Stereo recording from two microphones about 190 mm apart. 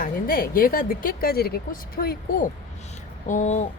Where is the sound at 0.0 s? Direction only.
50° left (ahead or behind).